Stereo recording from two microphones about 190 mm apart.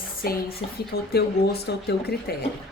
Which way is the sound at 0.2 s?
50° left (ahead or behind).